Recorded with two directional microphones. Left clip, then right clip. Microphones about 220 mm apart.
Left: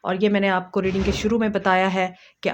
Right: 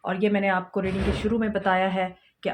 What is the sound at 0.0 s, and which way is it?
Speech, 45° left (ahead or behind).